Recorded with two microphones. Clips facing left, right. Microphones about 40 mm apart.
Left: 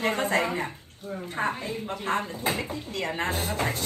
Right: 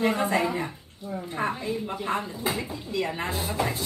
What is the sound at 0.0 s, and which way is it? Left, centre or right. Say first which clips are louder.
Speech: right 1 dB; left.